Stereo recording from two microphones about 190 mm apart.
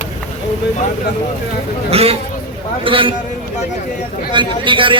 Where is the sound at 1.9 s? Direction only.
30° right (ahead or behind).